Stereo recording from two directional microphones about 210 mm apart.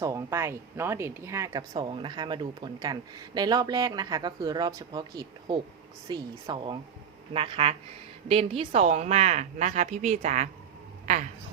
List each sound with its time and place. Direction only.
0.0 s a woman's voice: 15° right (ahead or behind); by 11.3 s 35° right (ahead or behind)